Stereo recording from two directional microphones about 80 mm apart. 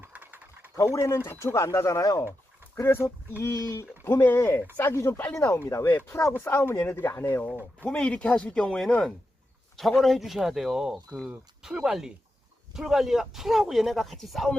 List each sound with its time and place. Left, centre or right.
0.0 s mechanisms: right
0.8 s speech: left
2.7 s speech: left
7.9 s speech: centre